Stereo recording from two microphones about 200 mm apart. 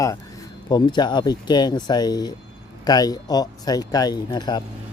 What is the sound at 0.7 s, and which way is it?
Speech, 20° left (ahead or behind).